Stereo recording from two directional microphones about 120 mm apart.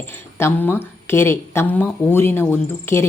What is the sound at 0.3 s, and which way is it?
Speech, 20° left (ahead or behind).